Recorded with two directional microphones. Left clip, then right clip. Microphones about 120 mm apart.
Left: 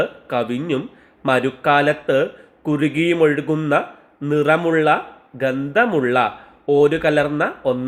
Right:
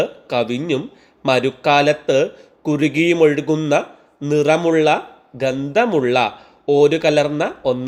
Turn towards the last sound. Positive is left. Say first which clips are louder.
# right 1 dB
turn(degrees=-40)  # may be behind; listen again after turning